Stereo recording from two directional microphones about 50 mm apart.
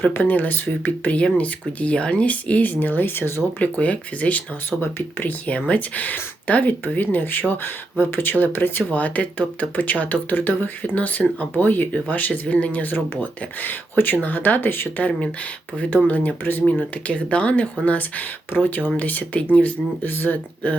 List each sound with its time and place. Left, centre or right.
0.0 s speech: left
3.6 s speech: left
4.8 s speech: left
5.5 s speech: left
8.8 s speech: left
16.0 s speech: left
17.1 s speech: left